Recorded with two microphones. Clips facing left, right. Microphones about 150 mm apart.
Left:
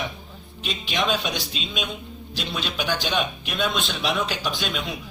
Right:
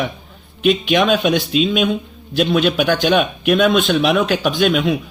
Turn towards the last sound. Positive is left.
turn(degrees=-65)  # may be behind; listen again after turning